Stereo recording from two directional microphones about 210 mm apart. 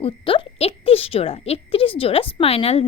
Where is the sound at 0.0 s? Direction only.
25° left (ahead or behind).